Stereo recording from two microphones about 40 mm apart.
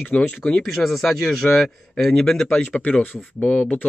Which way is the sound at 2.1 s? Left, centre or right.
Centre.